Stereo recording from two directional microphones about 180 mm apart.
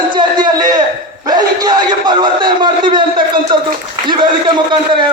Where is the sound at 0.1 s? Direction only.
25° right (ahead or behind).